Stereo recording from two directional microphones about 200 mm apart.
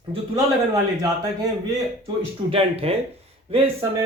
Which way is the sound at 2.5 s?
30° right (ahead or behind).